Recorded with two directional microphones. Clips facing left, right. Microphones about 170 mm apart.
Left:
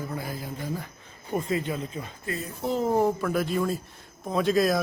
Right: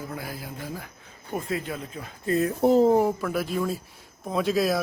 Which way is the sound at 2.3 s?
65° right (ahead or behind).